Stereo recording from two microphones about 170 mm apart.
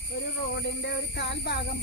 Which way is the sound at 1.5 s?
75° left (ahead or behind).